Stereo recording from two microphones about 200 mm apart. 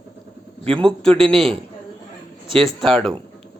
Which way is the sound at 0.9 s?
5° left (ahead or behind).